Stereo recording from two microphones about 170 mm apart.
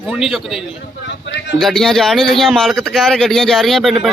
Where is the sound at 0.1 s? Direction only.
Centre (ahead or behind).